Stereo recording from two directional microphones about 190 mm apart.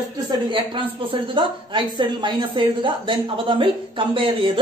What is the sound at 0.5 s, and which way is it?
Speech, 25° right (ahead or behind).